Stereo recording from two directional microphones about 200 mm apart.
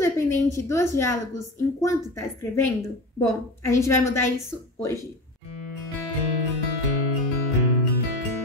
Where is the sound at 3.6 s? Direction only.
15° left (ahead or behind).